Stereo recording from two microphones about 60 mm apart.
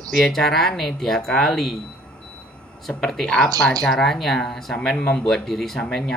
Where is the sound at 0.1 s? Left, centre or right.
Centre.